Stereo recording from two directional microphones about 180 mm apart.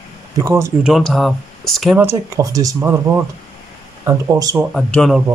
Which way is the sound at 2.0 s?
15° right (ahead or behind).